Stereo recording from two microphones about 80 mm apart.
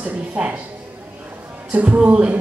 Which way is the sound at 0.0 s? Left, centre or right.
Centre.